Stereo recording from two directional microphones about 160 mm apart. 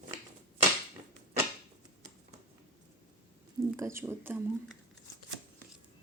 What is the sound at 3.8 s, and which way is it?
Speech, 15° right (ahead or behind).